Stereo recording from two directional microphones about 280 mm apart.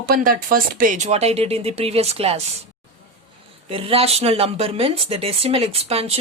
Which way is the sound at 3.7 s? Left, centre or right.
Centre.